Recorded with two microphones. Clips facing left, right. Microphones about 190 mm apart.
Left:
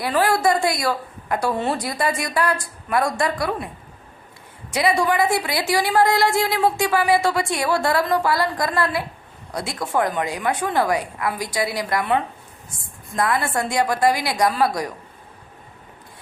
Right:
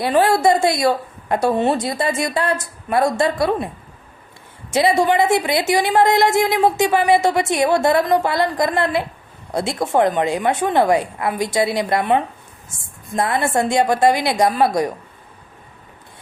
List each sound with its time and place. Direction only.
0.0 s a woman's voice: 25° right (ahead or behind)
4.7 s a woman's voice: 25° right (ahead or behind)